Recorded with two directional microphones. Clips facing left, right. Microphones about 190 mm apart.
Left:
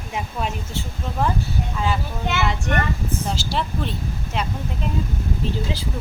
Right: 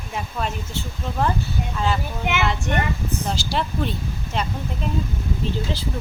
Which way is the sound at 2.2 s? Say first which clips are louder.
Even; 15° right (ahead or behind).